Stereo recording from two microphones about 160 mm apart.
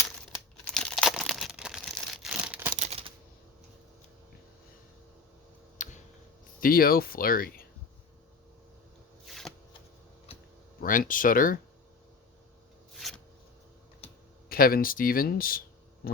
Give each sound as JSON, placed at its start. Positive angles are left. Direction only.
{"t": 0.6, "sound": "tearing", "side_deg": 5}
{"t": 2.7, "sound": "a sound", "side_deg": -45}
{"t": 5.7, "sound": "a sound", "side_deg": 50}
{"t": 6.6, "sound": "speech", "side_deg": 65}
{"t": 9.2, "sound": "shuffling cards", "side_deg": 0}
{"t": 10.8, "sound": "speech", "side_deg": 60}
{"t": 12.9, "sound": "a sound", "side_deg": 0}
{"t": 14.0, "sound": "computer keyboard", "side_deg": 40}
{"t": 14.5, "sound": "speech", "side_deg": 65}